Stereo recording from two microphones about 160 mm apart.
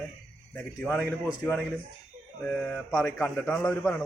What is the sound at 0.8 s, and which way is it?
Speech, 10° left (ahead or behind).